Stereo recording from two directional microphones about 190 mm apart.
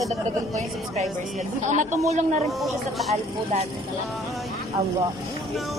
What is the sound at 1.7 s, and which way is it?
Speech, 40° right (ahead or behind).